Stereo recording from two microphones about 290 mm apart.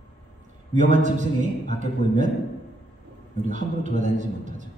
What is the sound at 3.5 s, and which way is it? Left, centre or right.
A man's voice, right.